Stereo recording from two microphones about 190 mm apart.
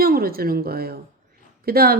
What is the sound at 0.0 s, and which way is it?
A woman's voice, 50° right (ahead or behind).